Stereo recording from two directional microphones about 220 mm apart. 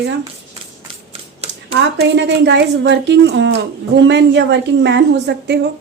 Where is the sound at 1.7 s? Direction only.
55° right (ahead or behind).